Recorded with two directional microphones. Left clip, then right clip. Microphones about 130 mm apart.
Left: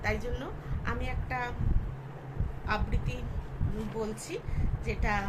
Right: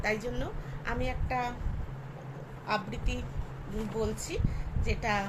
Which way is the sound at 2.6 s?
25° right (ahead or behind).